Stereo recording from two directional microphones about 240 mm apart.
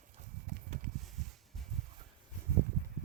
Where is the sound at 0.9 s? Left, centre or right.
Centre.